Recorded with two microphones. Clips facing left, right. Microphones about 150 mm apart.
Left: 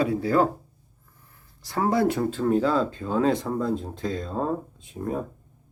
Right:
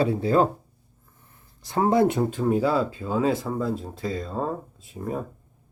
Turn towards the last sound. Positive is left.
turn(degrees=0)  # may be behind; listen again after turning